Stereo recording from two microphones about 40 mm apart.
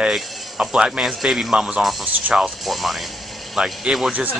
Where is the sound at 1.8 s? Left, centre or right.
Centre.